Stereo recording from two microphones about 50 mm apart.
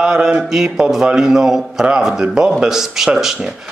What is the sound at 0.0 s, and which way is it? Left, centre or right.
Mantra, centre.